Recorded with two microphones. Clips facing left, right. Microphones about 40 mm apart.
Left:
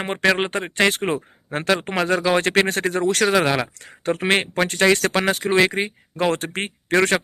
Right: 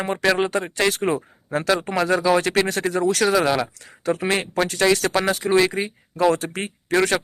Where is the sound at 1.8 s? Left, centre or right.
Left.